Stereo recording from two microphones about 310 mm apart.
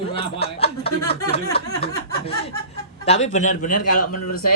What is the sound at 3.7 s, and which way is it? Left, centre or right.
Speech, left.